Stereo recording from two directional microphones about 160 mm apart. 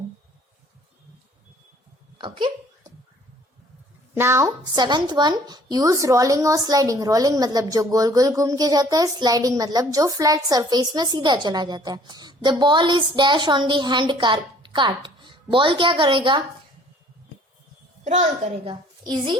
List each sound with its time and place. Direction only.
2.1 s speech: 30° right (ahead or behind)
4.1 s speech: 15° right (ahead or behind); by 16.4 s 30° right (ahead or behind)
18.0 s speech: 40° right (ahead or behind)